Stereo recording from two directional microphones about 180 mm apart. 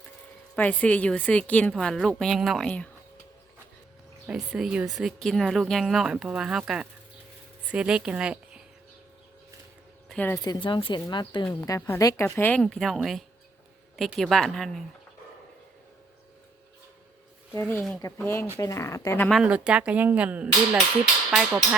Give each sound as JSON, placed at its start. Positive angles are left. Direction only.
{"t": 0.5, "sound": "a woman's voice", "side_deg": 10}
{"t": 4.3, "sound": "a woman's voice", "side_deg": 0}
{"t": 10.1, "sound": "speech", "side_deg": 10}
{"t": 10.4, "sound": "a woman's voice", "side_deg": 25}
{"t": 17.5, "sound": "a woman's voice", "side_deg": 15}
{"t": 19.4, "sound": "speech", "side_deg": -5}